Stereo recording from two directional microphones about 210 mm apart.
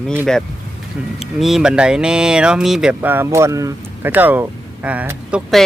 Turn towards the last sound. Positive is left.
turn(degrees=-5)  # may be behind; listen again after turning